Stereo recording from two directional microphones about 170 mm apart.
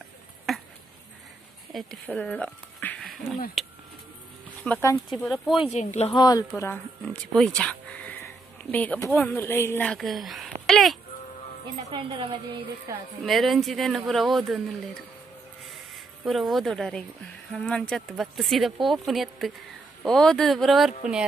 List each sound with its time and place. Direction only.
1.7 s speech: centre (ahead or behind)
3.6 s a sound: centre (ahead or behind)
4.6 s speech: 10° left (ahead or behind)
5.1 s speech: centre (ahead or behind)
5.6 s speech: 40° left (ahead or behind)
6.1 s speech: 20° left (ahead or behind)
6.5 s speech: 10° left (ahead or behind)
7.3 s a sound: 5° left (ahead or behind)
8.7 s speech: 10° left (ahead or behind)
9.8 s speech: centre (ahead or behind)
11.9 s a woman's voice: 30° right (ahead or behind)
12.9 s a woman's voice: 20° right (ahead or behind)
13.2 s speech: centre (ahead or behind)
16.3 s speech: centre (ahead or behind)